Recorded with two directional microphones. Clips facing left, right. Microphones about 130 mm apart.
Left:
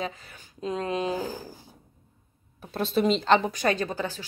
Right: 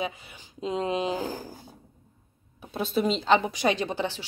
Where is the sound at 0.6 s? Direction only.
20° right (ahead or behind).